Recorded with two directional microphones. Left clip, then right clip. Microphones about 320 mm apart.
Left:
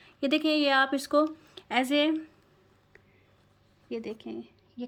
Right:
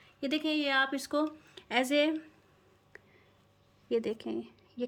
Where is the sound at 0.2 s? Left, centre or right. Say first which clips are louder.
Left 6 dB; centre.